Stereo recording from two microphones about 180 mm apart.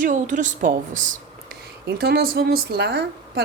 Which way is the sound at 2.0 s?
60° right (ahead or behind).